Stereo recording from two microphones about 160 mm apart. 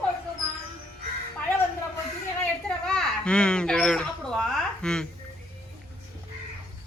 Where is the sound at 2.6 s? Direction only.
5° left (ahead or behind).